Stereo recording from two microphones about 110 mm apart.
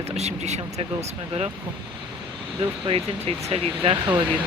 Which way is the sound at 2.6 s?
60° right (ahead or behind).